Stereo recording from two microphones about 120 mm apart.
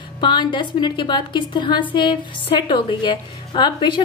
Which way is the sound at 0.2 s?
40° left (ahead or behind).